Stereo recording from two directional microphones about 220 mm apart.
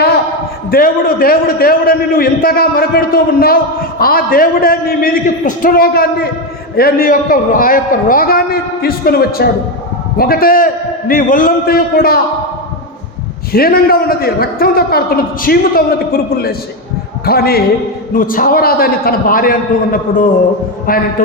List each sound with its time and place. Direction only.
0.7 s a man's voice: 40° left (ahead or behind)
13.5 s a man's voice: 45° left (ahead or behind)